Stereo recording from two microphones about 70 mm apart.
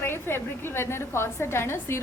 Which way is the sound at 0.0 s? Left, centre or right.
Left.